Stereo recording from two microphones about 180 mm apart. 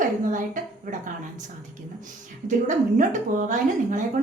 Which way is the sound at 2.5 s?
45° right (ahead or behind).